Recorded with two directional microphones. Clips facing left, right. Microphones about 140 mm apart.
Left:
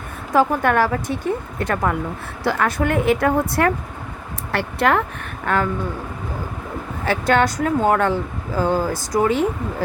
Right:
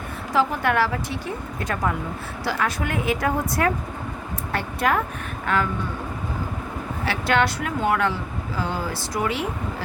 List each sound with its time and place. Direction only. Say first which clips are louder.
0.3 s speech: left 4 dB; 50° left (ahead or behind)
4.5 s speech: left 4 dB; 70° left (ahead or behind)
5.5 s speech: left 3 dB; 50° left (ahead or behind)
7.0 s speech: left 4 dB; 45° left (ahead or behind)